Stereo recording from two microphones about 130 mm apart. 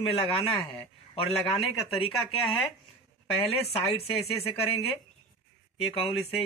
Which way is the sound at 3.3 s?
50° left (ahead or behind).